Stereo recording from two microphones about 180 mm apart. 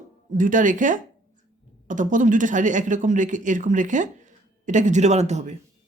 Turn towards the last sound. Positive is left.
turn(degrees=-40)  # may be behind; listen again after turning